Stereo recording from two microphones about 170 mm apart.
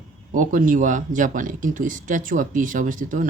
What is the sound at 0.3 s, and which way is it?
Speech, 50° right (ahead or behind).